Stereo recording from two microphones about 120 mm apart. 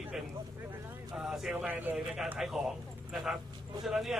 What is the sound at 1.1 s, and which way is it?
Vehicle, 5° right (ahead or behind).